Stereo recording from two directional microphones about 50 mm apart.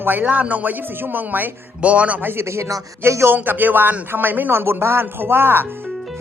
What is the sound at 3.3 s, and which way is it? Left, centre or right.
A man's voice, right.